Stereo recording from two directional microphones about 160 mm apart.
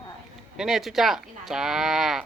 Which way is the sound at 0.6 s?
Centre (ahead or behind).